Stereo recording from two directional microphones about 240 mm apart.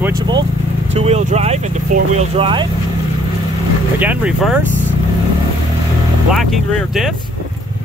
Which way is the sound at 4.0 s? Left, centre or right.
Centre.